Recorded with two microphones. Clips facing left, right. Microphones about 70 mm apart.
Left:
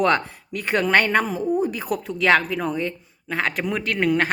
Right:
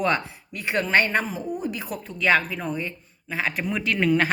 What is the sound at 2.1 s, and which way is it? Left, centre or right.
A woman's voice, left.